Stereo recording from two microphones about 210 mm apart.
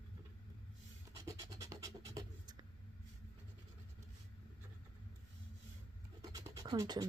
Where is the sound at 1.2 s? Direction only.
15° right (ahead or behind).